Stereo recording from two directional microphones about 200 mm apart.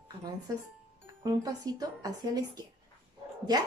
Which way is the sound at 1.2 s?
20° right (ahead or behind).